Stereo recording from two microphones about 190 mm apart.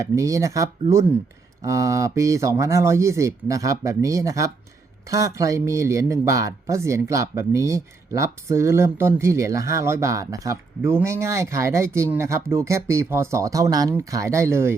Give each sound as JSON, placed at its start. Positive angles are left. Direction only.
{"t": 0.0, "sound": "speech", "side_deg": -15}